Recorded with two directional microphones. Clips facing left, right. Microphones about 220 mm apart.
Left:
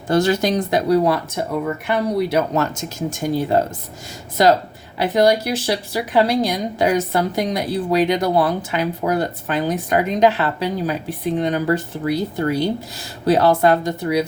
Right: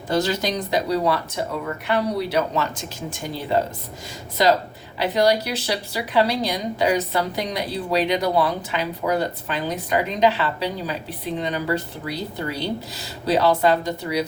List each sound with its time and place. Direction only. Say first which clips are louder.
0.1 s a woman's voice: left 5 dB; 50° left (ahead or behind)
4.9 s a woman's voice: left 3 dB; 50° left (ahead or behind)